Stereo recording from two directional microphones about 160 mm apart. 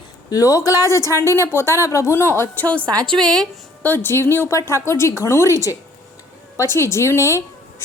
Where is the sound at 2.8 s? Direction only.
25° right (ahead or behind).